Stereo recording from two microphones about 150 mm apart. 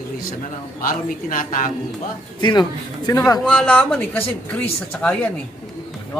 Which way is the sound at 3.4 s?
5° left (ahead or behind).